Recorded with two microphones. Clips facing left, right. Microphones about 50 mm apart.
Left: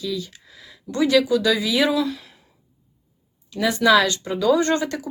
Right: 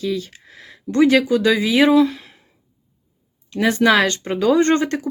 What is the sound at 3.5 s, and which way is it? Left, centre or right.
Speech, right.